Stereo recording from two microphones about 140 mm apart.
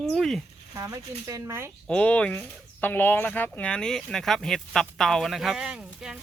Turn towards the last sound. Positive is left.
turn(degrees=-5)  # may be behind; listen again after turning